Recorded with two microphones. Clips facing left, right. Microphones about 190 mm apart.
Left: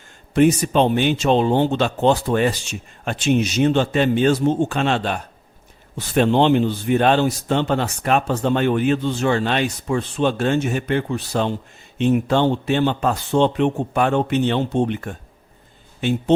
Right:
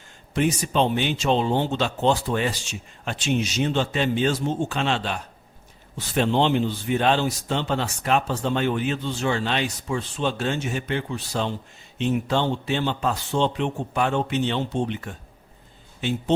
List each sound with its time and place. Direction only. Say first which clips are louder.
0.3 s speech: left 7 dB; 55° left (ahead or behind)